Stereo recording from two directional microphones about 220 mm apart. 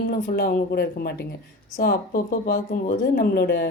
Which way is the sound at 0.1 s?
40° left (ahead or behind).